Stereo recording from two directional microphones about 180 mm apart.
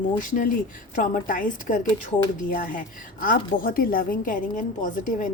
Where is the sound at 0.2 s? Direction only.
50° left (ahead or behind).